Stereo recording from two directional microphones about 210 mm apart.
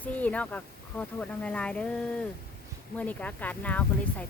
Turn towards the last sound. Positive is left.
turn(degrees=5)  # may be behind; listen again after turning